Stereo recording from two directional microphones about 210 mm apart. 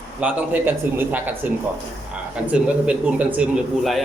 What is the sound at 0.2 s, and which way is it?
A man's voice, 5° right (ahead or behind).